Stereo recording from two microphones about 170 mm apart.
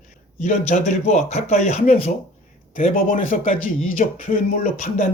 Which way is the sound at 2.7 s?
50° left (ahead or behind).